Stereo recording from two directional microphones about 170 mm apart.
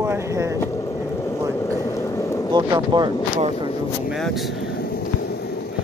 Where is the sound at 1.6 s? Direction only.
15° left (ahead or behind).